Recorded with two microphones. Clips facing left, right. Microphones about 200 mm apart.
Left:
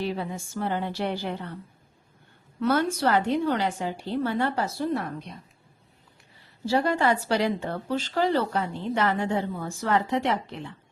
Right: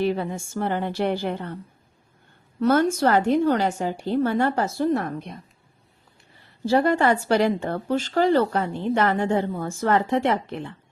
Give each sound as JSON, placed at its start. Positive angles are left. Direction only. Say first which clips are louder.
{"t": 0.0, "sound": "speech", "louder": "right 6 dB", "side_deg": -55}
{"t": 2.6, "sound": "speech", "louder": "right 5 dB", "side_deg": -45}
{"t": 6.7, "sound": "speech", "louder": "right 4 dB", "side_deg": -55}